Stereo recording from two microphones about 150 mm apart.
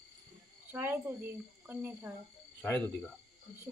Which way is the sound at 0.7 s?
15° right (ahead or behind).